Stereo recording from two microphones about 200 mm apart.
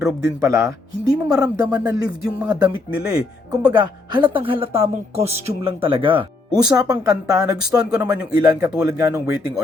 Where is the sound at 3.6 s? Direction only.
20° right (ahead or behind).